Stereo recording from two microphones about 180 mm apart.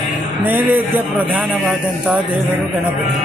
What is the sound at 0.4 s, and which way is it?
Speech, 10° right (ahead or behind).